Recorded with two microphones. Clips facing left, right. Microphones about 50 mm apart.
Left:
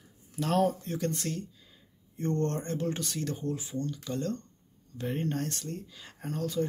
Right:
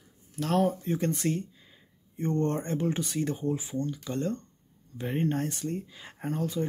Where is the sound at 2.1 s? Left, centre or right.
Centre.